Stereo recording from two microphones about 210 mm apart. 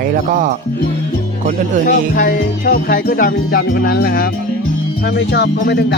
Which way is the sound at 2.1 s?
40° left (ahead or behind).